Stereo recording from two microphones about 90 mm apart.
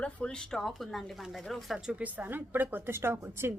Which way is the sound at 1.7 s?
15° right (ahead or behind).